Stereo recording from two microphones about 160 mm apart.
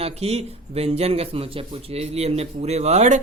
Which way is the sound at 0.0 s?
40° right (ahead or behind).